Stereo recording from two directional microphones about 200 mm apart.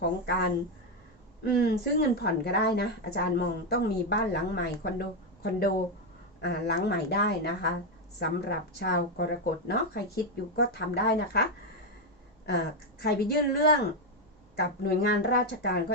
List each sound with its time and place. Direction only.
0.3 s a woman's voice: 55° left (ahead or behind)
12.5 s a woman's voice: 50° left (ahead or behind)